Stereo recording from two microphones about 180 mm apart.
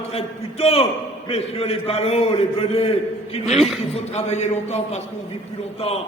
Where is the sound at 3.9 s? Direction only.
35° left (ahead or behind).